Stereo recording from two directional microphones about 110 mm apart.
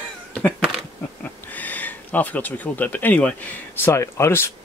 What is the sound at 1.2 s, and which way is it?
Speech, 15° left (ahead or behind).